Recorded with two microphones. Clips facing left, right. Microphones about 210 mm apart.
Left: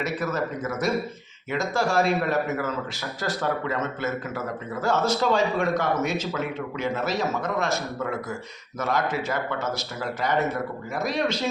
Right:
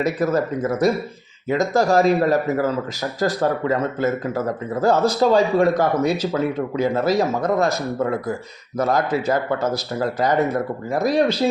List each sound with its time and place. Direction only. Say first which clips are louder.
0.0 s a man's voice: right 7 dB; 35° right (ahead or behind)